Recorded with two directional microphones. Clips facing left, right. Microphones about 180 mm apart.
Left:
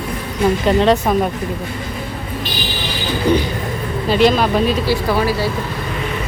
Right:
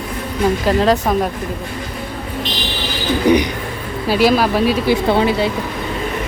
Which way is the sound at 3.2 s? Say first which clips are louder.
Right 2 dB; 15° right (ahead or behind).